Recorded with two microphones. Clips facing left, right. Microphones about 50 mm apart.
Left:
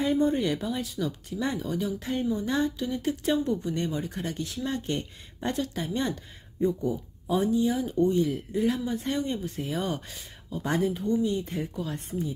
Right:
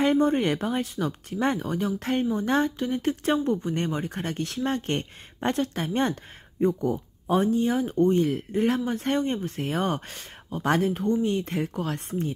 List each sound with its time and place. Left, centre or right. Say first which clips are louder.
0.0 s speech: right 3 dB; right